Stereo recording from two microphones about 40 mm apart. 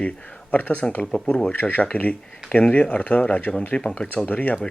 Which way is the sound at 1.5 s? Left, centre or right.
Left.